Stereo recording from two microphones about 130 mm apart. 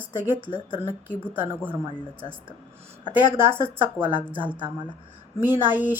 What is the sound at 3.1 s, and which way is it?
A woman's voice, 15° right (ahead or behind).